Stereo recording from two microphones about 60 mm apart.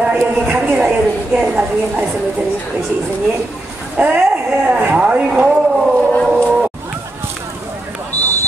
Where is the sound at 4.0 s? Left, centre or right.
Right.